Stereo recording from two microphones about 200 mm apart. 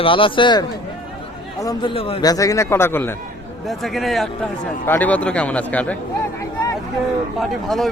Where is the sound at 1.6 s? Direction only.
25° left (ahead or behind).